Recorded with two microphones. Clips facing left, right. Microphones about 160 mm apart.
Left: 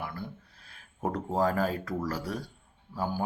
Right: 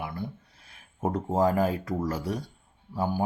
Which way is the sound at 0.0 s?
20° right (ahead or behind).